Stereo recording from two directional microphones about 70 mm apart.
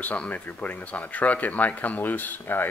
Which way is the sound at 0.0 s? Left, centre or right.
Left.